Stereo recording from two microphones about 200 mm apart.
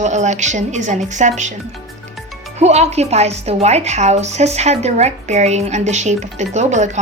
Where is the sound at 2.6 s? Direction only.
35° right (ahead or behind).